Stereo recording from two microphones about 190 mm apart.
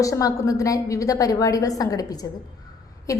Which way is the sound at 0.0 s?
15° left (ahead or behind).